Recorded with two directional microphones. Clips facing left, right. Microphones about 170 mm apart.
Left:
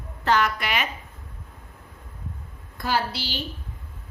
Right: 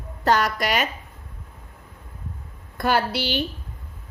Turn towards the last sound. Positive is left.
turn(degrees=-60)  # may be behind; listen again after turning